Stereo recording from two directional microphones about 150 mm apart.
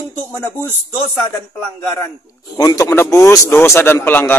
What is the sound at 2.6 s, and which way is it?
A man's voice, 20° left (ahead or behind).